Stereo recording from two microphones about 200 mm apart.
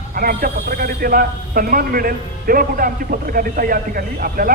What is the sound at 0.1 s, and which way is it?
A man's voice, 45° right (ahead or behind).